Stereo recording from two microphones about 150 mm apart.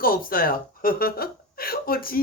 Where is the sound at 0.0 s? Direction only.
75° left (ahead or behind).